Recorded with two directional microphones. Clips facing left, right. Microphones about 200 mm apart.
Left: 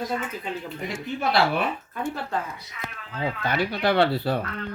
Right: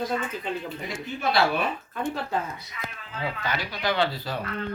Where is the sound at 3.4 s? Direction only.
60° left (ahead or behind).